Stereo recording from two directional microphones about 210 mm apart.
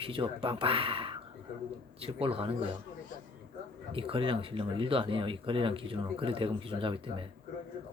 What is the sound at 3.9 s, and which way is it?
Speech, 25° right (ahead or behind).